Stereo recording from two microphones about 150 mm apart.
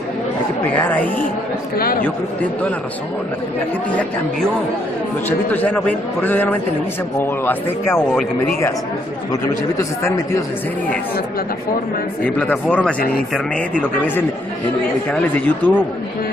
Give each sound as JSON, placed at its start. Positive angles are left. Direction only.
{"t": 0.7, "sound": "a man's voice", "side_deg": 10}
{"t": 1.8, "sound": "a man's voice", "side_deg": 80}
{"t": 5.5, "sound": "a man's voice", "side_deg": 10}
{"t": 9.3, "sound": "speech", "side_deg": 20}
{"t": 12.2, "sound": "a man's voice", "side_deg": 10}